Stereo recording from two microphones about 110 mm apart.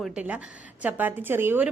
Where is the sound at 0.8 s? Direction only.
15° right (ahead or behind).